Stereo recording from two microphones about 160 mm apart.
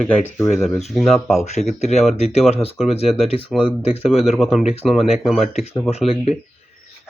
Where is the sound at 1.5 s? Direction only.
45° left (ahead or behind).